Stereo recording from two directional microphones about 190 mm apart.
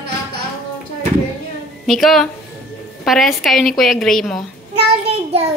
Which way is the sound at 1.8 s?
Centre (ahead or behind).